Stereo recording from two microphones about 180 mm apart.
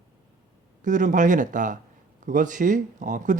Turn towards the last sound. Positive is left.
turn(degrees=-45)  # may be behind; listen again after turning